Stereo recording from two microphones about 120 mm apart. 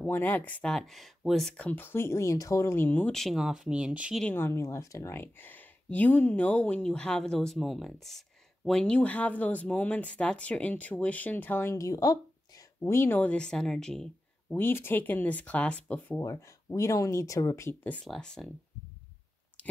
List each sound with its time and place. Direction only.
0.0 s speech: 15° left (ahead or behind)
1.7 s speech: 15° left (ahead or behind); by 4.2 s 10° right (ahead or behind)
4.2 s speech: 15° left (ahead or behind)
14.5 s speech: 20° left (ahead or behind)
16.2 s speech: 25° left (ahead or behind)
17.8 s speech: 10° left (ahead or behind)
19.6 s clicking: 10° left (ahead or behind)